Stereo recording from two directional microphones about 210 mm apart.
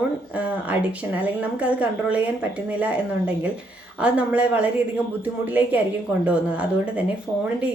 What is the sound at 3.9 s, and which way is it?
A woman's voice, 5° right (ahead or behind).